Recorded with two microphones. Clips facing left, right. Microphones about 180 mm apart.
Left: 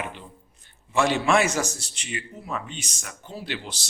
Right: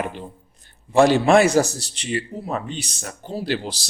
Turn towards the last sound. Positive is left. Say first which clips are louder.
# right 9 dB
turn(degrees=-35)  # may be behind; listen again after turning